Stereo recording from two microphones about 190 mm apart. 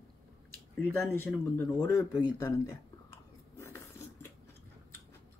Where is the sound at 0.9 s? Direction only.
10° left (ahead or behind).